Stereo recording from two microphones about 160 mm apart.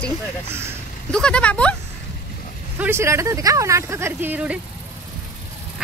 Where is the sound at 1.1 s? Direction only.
5° left (ahead or behind).